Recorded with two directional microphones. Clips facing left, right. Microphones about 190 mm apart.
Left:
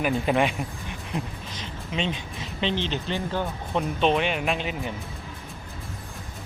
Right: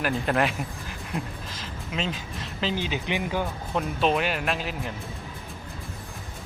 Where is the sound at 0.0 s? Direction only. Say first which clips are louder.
Left 2 dB; centre (ahead or behind).